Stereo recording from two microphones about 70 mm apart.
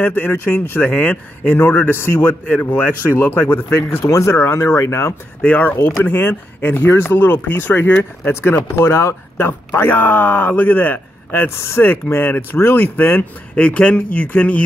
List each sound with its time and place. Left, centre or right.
0.0 s speech: left
0.7 s speech: left
4.0 s speech: left
5.4 s speech: left